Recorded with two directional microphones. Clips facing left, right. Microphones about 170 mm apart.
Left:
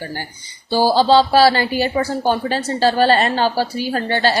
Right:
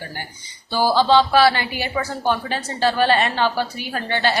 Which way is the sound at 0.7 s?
30° left (ahead or behind).